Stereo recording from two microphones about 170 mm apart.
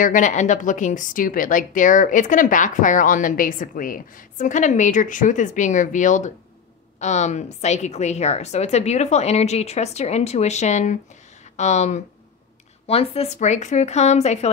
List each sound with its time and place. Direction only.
0.0 s a woman's voice: 50° left (ahead or behind)